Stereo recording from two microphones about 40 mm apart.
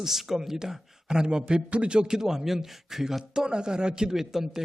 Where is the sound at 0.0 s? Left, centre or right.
Centre.